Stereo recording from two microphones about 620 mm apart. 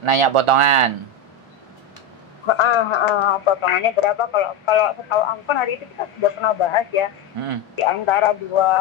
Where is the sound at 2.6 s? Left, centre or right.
Left.